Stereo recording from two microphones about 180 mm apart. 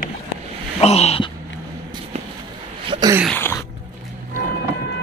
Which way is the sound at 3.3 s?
10° left (ahead or behind).